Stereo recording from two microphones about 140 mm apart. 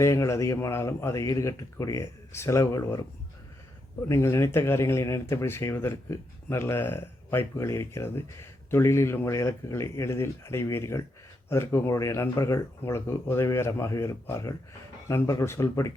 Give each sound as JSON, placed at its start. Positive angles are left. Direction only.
{"t": 0.0, "sound": "speech", "side_deg": 20}
{"t": 4.1, "sound": "speech", "side_deg": 20}